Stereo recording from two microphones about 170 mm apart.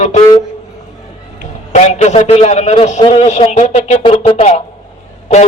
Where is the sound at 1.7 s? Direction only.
40° left (ahead or behind).